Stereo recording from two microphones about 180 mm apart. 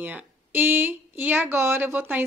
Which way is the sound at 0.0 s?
10° right (ahead or behind).